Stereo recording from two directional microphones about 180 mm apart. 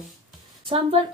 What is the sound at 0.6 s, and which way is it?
Speech, 30° right (ahead or behind).